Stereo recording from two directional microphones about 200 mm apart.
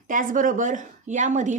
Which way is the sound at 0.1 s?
40° right (ahead or behind).